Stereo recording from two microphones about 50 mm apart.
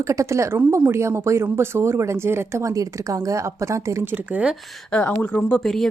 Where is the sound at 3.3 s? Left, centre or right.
Right.